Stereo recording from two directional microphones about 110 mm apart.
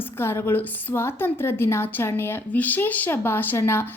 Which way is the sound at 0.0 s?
20° left (ahead or behind).